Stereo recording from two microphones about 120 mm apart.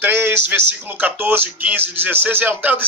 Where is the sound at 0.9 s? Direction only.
15° right (ahead or behind).